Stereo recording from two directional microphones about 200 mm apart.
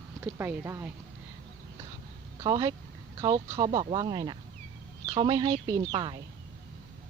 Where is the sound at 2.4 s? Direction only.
20° right (ahead or behind).